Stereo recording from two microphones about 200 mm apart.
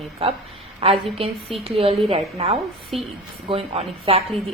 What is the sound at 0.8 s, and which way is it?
A woman's voice, 30° right (ahead or behind).